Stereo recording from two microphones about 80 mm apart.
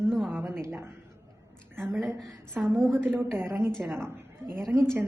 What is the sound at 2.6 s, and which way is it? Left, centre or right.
Speech, centre.